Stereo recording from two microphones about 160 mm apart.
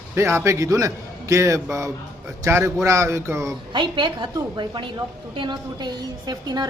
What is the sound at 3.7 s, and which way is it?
A woman's voice, 30° right (ahead or behind).